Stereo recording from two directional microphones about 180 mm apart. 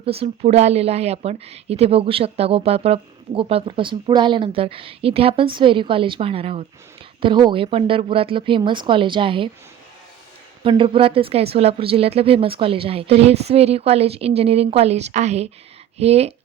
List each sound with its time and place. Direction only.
0.0 s a woman's voice: 35° right (ahead or behind)
10.6 s a woman's voice: 30° right (ahead or behind)